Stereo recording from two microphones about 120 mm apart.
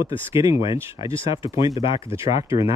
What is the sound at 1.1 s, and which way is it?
Speech, 45° left (ahead or behind).